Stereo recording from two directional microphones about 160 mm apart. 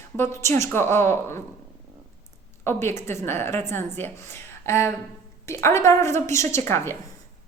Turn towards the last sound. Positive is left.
turn(degrees=15)  # may be behind; listen again after turning